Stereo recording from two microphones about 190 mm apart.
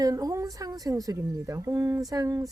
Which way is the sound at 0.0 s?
20° right (ahead or behind).